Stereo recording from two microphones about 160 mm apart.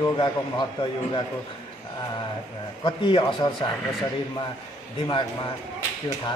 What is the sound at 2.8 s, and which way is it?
Speech, 30° left (ahead or behind).